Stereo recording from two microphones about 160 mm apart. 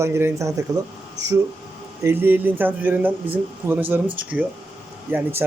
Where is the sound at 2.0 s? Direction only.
15° right (ahead or behind).